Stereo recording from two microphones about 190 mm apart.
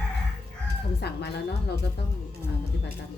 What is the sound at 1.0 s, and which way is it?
Speech, 60° left (ahead or behind).